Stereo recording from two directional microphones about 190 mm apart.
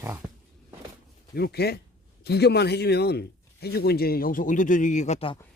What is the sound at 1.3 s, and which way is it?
Speech, 60° left (ahead or behind).